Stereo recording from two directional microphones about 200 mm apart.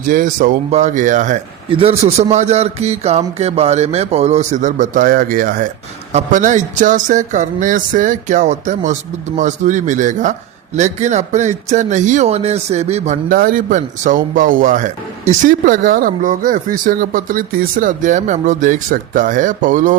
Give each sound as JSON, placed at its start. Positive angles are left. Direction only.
{"t": 0.0, "sound": "speech", "side_deg": -40}